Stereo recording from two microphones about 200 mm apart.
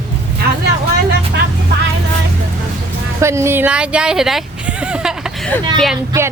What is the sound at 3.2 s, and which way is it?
Speech, 15° right (ahead or behind).